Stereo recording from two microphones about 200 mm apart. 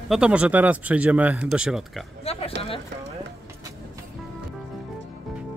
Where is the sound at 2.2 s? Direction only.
30° left (ahead or behind).